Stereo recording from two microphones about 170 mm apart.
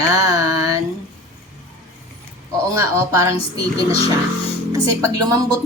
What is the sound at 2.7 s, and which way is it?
Speech, 15° right (ahead or behind).